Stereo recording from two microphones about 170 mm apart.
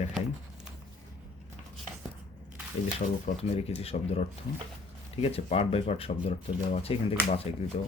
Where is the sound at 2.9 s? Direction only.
40° left (ahead or behind).